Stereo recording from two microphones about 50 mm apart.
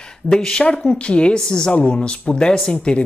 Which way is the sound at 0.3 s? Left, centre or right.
Centre.